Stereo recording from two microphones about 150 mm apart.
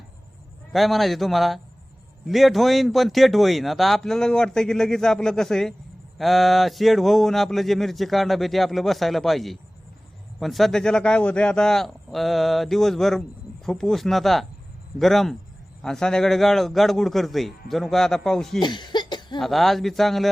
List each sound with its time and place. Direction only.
0.7 s speech: centre (ahead or behind)
18.6 s cough: 30° left (ahead or behind)
19.4 s speech: centre (ahead or behind)